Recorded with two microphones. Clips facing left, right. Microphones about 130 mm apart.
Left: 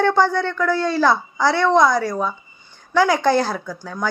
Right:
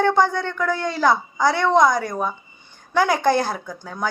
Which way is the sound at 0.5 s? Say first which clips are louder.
Left 4 dB; 15° right (ahead or behind).